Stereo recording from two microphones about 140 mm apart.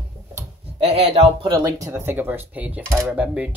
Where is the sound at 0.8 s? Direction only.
45° right (ahead or behind).